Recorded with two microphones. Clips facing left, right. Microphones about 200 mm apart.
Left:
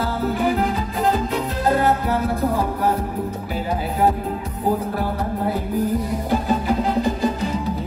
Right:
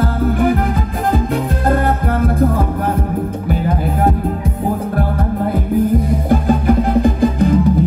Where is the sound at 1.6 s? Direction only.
55° right (ahead or behind).